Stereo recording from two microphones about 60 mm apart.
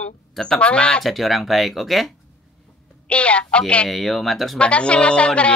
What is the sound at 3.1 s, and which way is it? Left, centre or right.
Speech, centre.